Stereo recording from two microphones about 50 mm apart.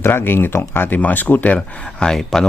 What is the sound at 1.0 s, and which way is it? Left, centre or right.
Speech, left.